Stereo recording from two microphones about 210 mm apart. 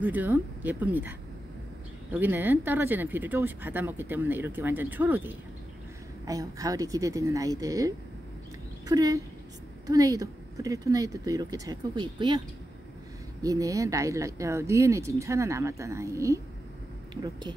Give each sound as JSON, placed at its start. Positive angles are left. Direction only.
{"t": 0.0, "sound": "speech", "side_deg": -10}
{"t": 2.1, "sound": "speech", "side_deg": -10}
{"t": 13.4, "sound": "speech", "side_deg": -15}